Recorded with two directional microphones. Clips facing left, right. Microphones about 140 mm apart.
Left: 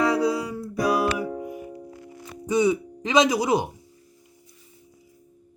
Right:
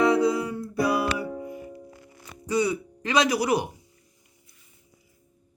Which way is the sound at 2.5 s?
20° left (ahead or behind).